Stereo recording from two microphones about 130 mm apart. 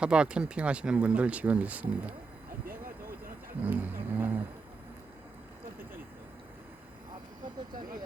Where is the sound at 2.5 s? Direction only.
90° right.